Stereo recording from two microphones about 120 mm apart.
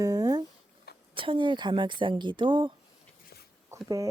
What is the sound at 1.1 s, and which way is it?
Speech, 45° right (ahead or behind).